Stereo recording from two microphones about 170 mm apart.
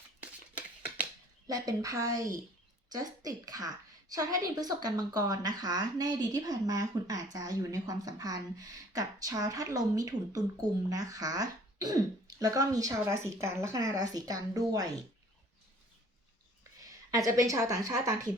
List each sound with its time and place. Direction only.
1.5 s a woman's voice: 20° right (ahead or behind)
16.8 s speech: 20° right (ahead or behind)